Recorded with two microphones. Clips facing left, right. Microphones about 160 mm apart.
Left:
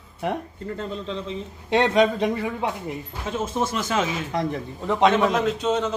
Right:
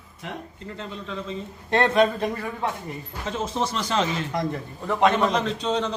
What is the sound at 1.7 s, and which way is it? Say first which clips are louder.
Speech: left 1 dB; 15° left (ahead or behind).